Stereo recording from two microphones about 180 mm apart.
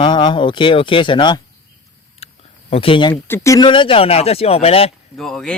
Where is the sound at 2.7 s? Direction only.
30° left (ahead or behind).